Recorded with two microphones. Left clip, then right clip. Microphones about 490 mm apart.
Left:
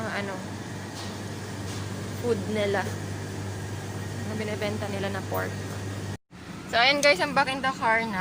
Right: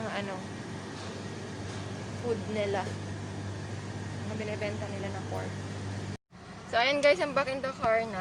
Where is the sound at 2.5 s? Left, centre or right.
Right.